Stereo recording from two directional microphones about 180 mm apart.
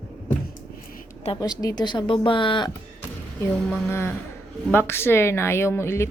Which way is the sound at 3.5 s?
Centre (ahead or behind).